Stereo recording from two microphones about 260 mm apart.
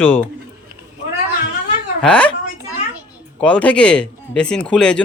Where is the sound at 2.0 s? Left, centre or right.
Centre.